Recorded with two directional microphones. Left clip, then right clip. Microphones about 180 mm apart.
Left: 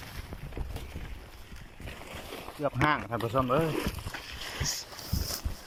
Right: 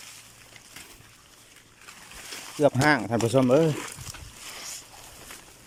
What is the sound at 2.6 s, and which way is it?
Speech, 35° right (ahead or behind).